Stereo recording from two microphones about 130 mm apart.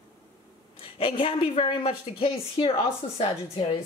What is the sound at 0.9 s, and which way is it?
Speech, 45° left (ahead or behind).